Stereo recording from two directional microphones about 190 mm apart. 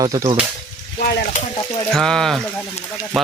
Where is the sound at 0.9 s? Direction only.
45° left (ahead or behind).